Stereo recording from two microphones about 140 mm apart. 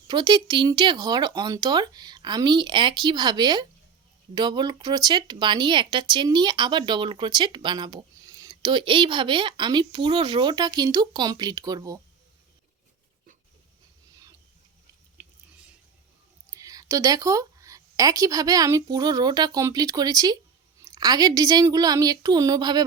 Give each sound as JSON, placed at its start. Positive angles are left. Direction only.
{"t": 0.1, "sound": "speech", "side_deg": -30}
{"t": 15.2, "sound": "chewing", "side_deg": -10}
{"t": 16.5, "sound": "a woman's voice", "side_deg": -25}